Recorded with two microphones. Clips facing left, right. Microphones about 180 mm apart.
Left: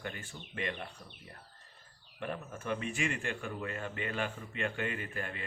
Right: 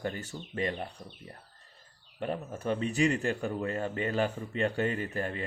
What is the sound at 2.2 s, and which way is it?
A man's voice, 30° right (ahead or behind).